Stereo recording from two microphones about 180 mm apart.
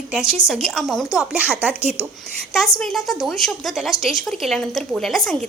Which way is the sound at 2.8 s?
Centre (ahead or behind).